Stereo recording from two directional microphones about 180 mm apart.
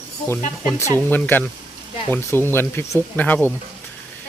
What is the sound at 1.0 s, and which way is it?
Speech, 10° left (ahead or behind).